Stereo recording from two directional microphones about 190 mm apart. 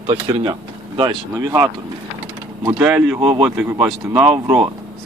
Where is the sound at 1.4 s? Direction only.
15° right (ahead or behind).